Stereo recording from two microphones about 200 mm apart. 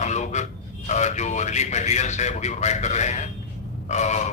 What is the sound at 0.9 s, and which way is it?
Speech, 35° left (ahead or behind).